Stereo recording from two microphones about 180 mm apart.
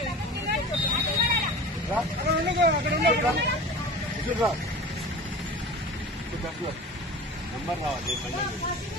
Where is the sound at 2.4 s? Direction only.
70° right (ahead or behind).